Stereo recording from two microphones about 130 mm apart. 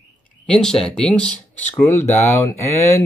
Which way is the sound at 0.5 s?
5° left (ahead or behind).